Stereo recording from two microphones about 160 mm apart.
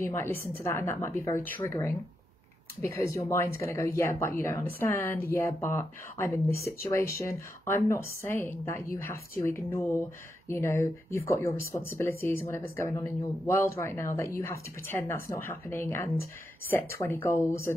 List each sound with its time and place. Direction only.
0.0 s speech: 15° left (ahead or behind)